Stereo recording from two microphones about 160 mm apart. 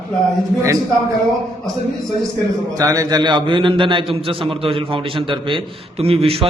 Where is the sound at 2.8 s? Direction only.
20° right (ahead or behind); by 6.5 s 35° right (ahead or behind).